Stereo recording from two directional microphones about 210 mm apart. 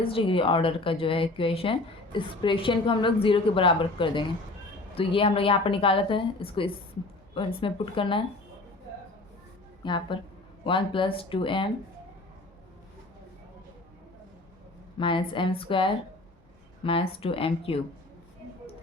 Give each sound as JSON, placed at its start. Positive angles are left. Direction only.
{"t": 0.0, "sound": "a woman's voice", "side_deg": 25}
{"t": 9.8, "sound": "a woman's voice", "side_deg": 20}
{"t": 14.9, "sound": "a woman's voice", "side_deg": 25}